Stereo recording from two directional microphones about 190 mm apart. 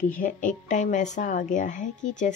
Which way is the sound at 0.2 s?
45° left (ahead or behind).